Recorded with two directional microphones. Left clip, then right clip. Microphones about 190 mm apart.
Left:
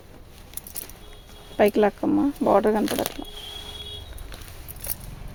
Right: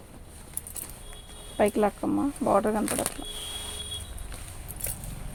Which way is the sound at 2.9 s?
45° left (ahead or behind).